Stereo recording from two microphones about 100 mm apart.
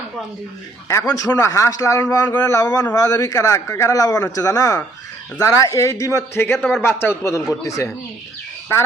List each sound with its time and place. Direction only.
0.9 s a man's voice: 35° left (ahead or behind)